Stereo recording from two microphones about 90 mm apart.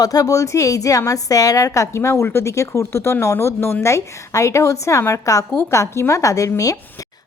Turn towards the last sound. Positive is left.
turn(degrees=35)  # may be behind; listen again after turning